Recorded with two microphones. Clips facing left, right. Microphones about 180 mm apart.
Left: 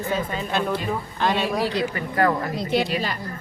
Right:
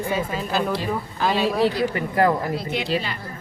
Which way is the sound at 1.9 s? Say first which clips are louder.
Right 2 dB; 25° right (ahead or behind).